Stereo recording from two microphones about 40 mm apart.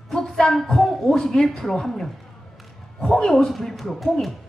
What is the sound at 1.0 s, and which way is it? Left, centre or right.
A woman's voice, centre.